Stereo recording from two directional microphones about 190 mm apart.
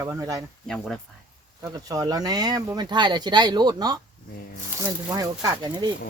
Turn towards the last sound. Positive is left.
turn(degrees=-20)  # may be behind; listen again after turning